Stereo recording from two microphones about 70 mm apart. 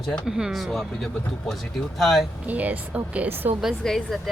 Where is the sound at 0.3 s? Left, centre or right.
Centre.